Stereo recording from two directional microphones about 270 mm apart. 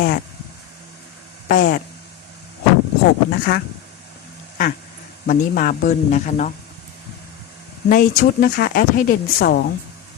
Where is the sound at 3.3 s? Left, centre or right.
Left.